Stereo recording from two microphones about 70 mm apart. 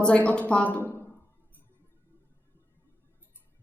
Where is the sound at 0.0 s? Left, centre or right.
Centre.